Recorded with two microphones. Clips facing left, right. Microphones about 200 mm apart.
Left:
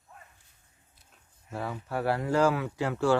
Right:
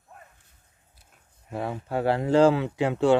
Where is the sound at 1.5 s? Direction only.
20° right (ahead or behind).